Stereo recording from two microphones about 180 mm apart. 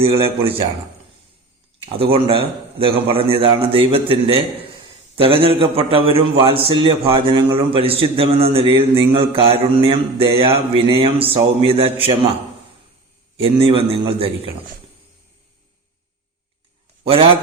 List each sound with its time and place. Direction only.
0.0 s a man's voice: 30° right (ahead or behind)
2.1 s a man's voice: 30° right (ahead or behind)
13.4 s a man's voice: 30° right (ahead or behind)
17.0 s a man's voice: 30° right (ahead or behind)